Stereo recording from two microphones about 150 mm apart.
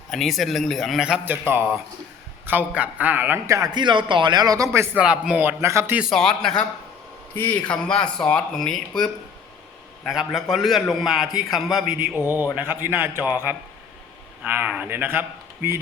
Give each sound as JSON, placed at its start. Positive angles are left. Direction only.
{"t": 0.1, "sound": "a man's voice", "side_deg": 0}
{"t": 5.0, "sound": "a man's voice", "side_deg": -5}
{"t": 6.1, "sound": "a man's voice", "side_deg": 5}
{"t": 10.0, "sound": "a man's voice", "side_deg": 0}
{"t": 11.9, "sound": "a man's voice", "side_deg": -15}